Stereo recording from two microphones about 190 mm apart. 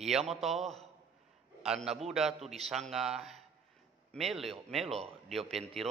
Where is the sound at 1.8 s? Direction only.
35° right (ahead or behind).